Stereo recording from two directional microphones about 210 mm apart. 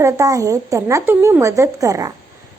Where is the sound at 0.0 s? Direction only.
15° right (ahead or behind).